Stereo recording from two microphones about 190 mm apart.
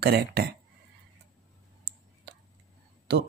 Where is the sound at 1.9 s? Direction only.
60° right (ahead or behind).